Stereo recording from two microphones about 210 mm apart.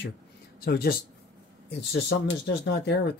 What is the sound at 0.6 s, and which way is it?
Speech, 45° left (ahead or behind).